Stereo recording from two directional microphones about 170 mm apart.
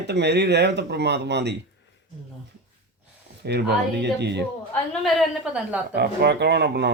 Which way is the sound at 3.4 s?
80° right.